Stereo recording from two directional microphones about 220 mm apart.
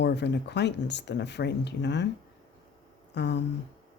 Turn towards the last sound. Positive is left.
turn(degrees=50)  # may be behind; listen again after turning